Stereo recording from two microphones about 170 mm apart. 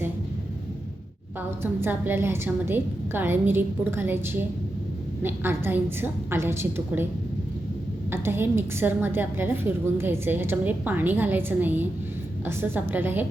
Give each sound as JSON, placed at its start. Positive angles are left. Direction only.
{"t": 1.4, "sound": "a woman's voice", "side_deg": -15}
{"t": 8.1, "sound": "a woman's voice", "side_deg": -15}